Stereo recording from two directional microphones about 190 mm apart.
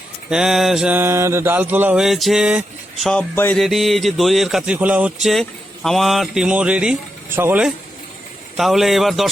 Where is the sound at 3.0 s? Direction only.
5° left (ahead or behind).